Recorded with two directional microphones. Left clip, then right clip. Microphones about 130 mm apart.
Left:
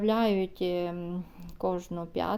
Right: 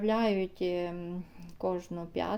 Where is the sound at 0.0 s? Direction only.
30° left (ahead or behind).